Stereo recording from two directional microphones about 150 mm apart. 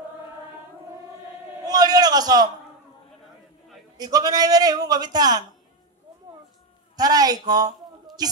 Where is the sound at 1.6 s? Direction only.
25° right (ahead or behind).